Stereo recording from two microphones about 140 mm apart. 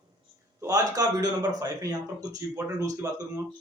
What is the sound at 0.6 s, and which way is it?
Speech, 25° right (ahead or behind).